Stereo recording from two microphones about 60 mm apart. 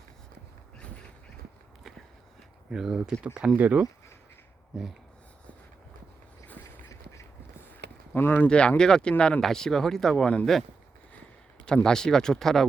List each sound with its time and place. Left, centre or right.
2.6 s speech: centre
3.5 s speech: right
8.1 s speech: left
8.4 s speech: centre
11.6 s speech: centre